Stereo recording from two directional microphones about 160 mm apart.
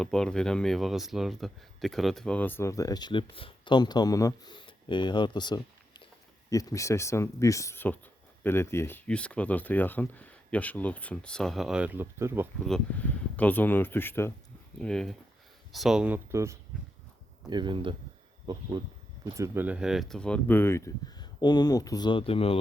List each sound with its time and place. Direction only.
0.0 s speech: 5° left (ahead or behind); by 12.5 s 15° right (ahead or behind)
12.6 s speech: 5° left (ahead or behind); by 16.6 s 15° right (ahead or behind)
17.5 s speech: 30° right (ahead or behind)
19.2 s speech: 15° right (ahead or behind); by 22.5 s 35° left (ahead or behind)